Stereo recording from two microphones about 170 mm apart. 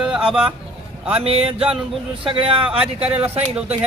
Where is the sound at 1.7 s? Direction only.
5° right (ahead or behind).